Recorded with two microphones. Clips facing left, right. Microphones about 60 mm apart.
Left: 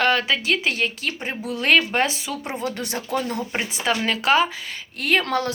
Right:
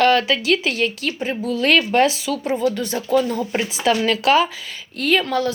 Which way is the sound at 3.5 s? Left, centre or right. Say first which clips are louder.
Right 5 dB; left.